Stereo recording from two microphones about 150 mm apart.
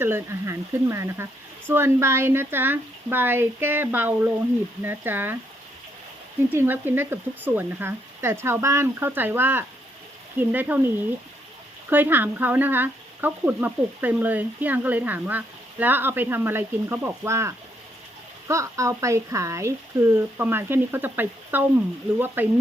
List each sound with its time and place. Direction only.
0.0 s speech: 15° right (ahead or behind)
6.5 s speech: 15° right (ahead or behind)
11.9 s speech: 15° right (ahead or behind)